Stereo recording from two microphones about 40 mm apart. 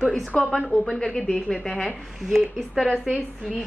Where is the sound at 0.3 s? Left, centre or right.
Left.